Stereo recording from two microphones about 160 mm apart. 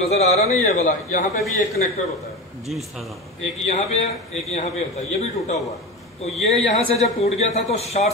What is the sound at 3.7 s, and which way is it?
A man's voice, 45° left (ahead or behind).